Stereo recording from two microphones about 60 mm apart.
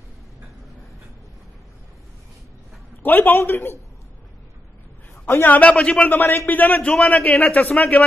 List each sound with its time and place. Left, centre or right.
3.0 s a man's voice: left
5.5 s speech: left